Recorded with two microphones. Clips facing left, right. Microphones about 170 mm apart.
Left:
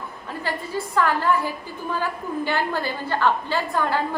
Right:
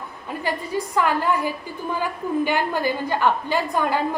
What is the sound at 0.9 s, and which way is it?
A woman's voice, 15° right (ahead or behind).